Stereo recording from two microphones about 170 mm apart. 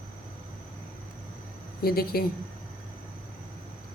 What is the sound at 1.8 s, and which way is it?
Speech, 65° left (ahead or behind).